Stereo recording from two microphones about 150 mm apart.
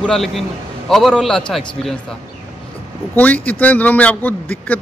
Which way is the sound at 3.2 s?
10° left (ahead or behind).